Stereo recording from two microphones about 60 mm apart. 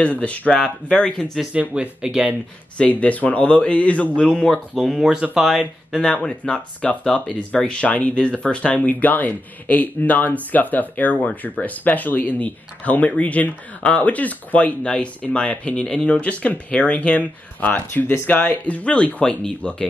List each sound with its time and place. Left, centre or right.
0.0 s speech: left
1.6 s speech: right
2.8 s speech: left
4.5 s speech: centre
5.0 s speech: centre
6.2 s speech: centre
19.2 s speech: centre